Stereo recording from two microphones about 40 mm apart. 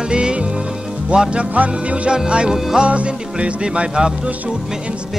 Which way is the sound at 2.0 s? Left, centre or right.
Right.